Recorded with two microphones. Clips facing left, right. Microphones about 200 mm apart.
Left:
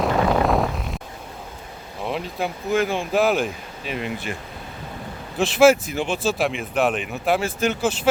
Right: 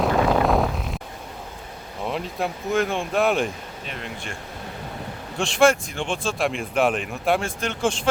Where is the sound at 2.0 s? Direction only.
Centre (ahead or behind).